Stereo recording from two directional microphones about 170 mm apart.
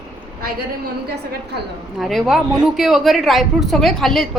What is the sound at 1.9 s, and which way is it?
A woman's voice, centre (ahead or behind).